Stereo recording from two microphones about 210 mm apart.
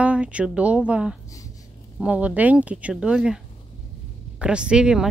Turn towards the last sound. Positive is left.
turn(degrees=-5)  # may be behind; listen again after turning